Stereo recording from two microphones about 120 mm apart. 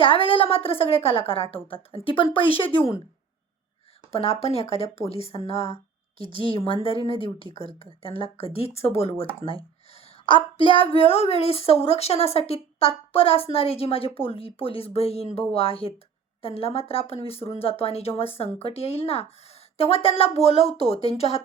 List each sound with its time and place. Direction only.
0.0 s a woman's voice: 45° left (ahead or behind)
4.1 s a woman's voice: 55° left (ahead or behind)
6.2 s a woman's voice: 40° right (ahead or behind)
6.8 s a woman's voice: 50° left (ahead or behind)